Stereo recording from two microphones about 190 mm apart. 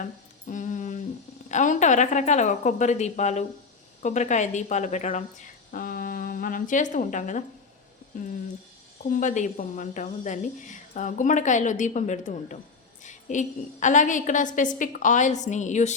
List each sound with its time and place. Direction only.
0.0 s music: 40° left (ahead or behind)
1.5 s speech: 40° left (ahead or behind)
5.7 s speech: 50° left (ahead or behind)